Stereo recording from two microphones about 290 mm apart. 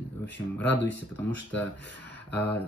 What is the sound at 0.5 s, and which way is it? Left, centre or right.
Speech, centre.